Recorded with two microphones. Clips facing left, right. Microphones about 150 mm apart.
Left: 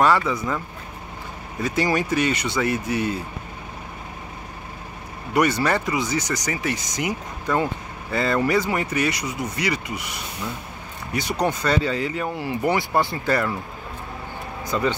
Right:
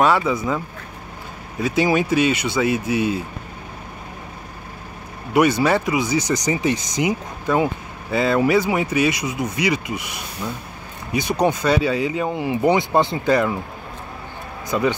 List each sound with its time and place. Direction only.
0.0 s speech: 20° right (ahead or behind)
1.6 s speech: 10° right (ahead or behind)
5.3 s speech: 10° right (ahead or behind)
14.7 s speech: 15° right (ahead or behind)